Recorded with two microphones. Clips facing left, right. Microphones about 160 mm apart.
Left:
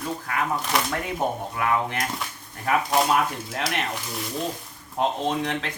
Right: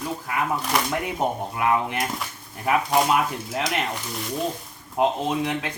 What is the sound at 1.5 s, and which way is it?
Speech, 20° right (ahead or behind).